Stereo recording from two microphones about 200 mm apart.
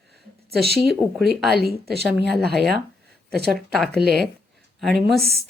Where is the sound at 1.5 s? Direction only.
55° right (ahead or behind).